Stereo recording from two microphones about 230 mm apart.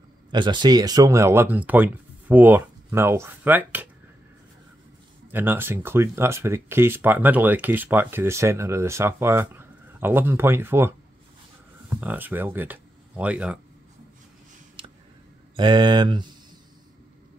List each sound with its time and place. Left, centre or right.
0.3 s speech: centre
5.3 s speech: centre
14.8 s clicking: right
15.5 s speech: centre